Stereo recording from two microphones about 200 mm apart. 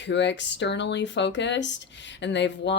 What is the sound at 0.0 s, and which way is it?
Speech, 60° left (ahead or behind).